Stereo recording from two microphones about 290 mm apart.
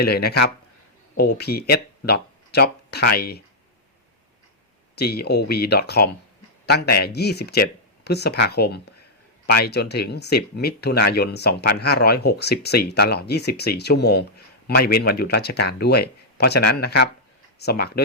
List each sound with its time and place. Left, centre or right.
0.0 s speech: left
4.9 s speech: left